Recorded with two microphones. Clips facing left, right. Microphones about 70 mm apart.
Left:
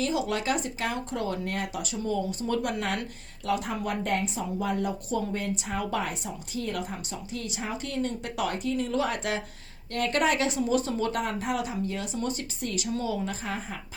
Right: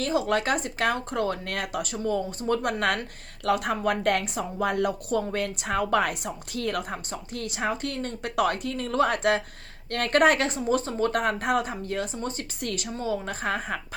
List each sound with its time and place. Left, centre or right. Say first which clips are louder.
0.0 s speech: right 3 dB; right
1.8 s speech: right 3 dB; right
3.4 s speech: right 4 dB; right
10.5 s speech: even; right
11.1 s speech: right 5 dB; right
12.1 s speech: left 1 dB; right
12.6 s speech: even; right
12.9 s speech: even; right
13.2 s speech: right 4 dB; right